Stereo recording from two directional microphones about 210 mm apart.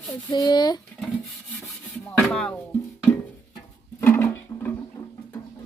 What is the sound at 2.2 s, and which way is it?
Speech, 5° left (ahead or behind).